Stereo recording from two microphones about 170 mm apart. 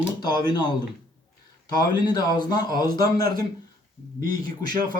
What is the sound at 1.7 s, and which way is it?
A man's voice, 25° left (ahead or behind).